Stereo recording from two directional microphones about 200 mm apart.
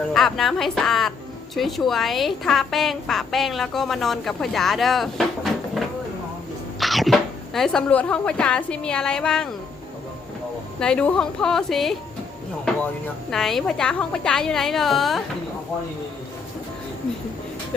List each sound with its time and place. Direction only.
0.1 s a woman's voice: centre (ahead or behind)
10.8 s a woman's voice: 5° left (ahead or behind)
13.3 s a woman's voice: centre (ahead or behind)